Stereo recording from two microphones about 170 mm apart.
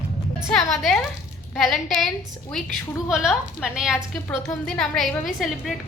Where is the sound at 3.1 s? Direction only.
5° right (ahead or behind).